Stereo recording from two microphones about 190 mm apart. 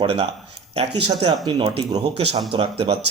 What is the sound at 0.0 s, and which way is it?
Speech, 30° right (ahead or behind).